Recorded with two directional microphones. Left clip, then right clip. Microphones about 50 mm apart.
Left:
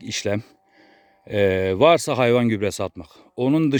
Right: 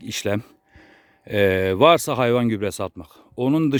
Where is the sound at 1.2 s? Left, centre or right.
Right.